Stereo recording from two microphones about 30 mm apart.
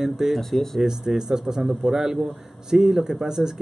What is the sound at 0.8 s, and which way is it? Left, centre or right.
Speech, centre.